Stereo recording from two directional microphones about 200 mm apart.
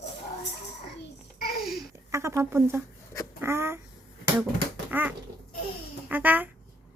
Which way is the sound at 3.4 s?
10° right (ahead or behind).